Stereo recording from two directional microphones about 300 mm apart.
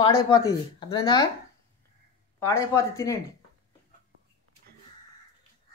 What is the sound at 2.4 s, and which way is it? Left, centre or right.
Speech, centre.